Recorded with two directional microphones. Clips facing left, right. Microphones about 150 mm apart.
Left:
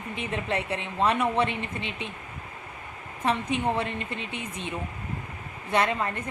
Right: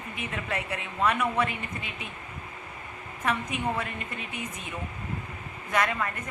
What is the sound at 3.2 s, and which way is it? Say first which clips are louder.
Speech: left 3 dB; 30° left (ahead or behind).